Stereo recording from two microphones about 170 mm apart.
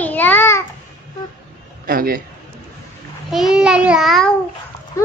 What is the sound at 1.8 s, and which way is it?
Speech, 55° right (ahead or behind).